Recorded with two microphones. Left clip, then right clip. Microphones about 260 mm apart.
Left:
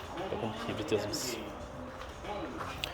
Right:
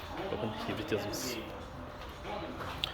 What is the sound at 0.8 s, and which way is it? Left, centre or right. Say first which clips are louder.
Speech: left 4 dB; centre.